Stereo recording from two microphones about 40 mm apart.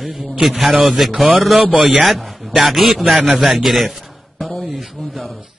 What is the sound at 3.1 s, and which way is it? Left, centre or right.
Speech, right.